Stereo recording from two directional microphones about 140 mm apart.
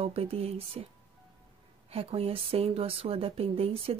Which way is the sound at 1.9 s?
45° right (ahead or behind).